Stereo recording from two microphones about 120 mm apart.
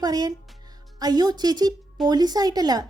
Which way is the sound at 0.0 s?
35° right (ahead or behind).